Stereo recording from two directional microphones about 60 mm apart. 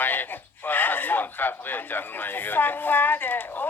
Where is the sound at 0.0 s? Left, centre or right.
Left.